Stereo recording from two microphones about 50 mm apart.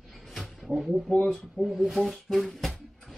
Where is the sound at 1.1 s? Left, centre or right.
Centre.